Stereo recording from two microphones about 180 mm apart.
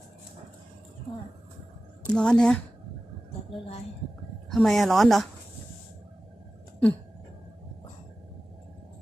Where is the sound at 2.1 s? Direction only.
5° left (ahead or behind).